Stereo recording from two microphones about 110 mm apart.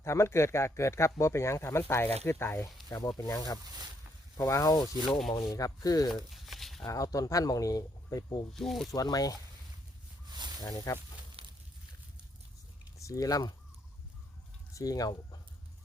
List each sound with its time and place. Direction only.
0.0 s speech: 25° left (ahead or behind)
3.2 s speech: 35° left (ahead or behind)
6.3 s a sound: centre (ahead or behind)
6.8 s speech: 30° left (ahead or behind)
8.5 s speech: centre (ahead or behind)
8.9 s speech: 35° left (ahead or behind)
10.6 s speech: 35° left (ahead or behind)
11.4 s a sound: 65° right (ahead or behind)
13.0 s speech: 30° left (ahead or behind)
14.7 s speech: 30° left (ahead or behind)